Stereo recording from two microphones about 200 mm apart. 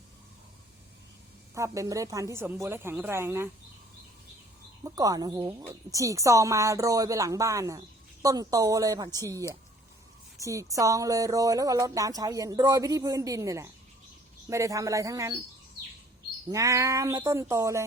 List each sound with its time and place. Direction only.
1.5 s speech: 15° right (ahead or behind)
4.8 s speech: 20° right (ahead or behind)
16.5 s speech: 15° right (ahead or behind)